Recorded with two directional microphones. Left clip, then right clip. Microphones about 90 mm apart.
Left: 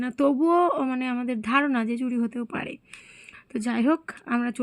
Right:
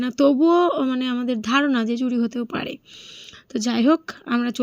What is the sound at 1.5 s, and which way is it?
Speech, 25° right (ahead or behind).